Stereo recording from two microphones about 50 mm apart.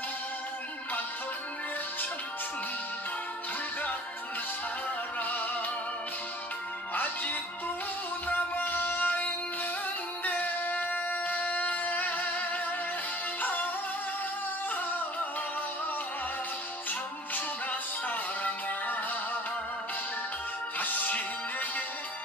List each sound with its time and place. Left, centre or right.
5.2 s music: left
6.9 s music: left
18.0 s music: left
20.8 s music: left